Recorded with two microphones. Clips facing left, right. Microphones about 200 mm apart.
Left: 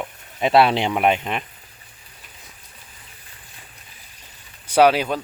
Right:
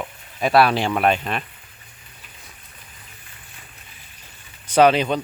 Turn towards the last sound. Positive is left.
turn(degrees=5)  # may be behind; listen again after turning